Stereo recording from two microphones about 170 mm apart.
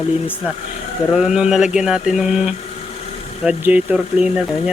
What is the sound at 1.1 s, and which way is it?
Speech, 5° right (ahead or behind).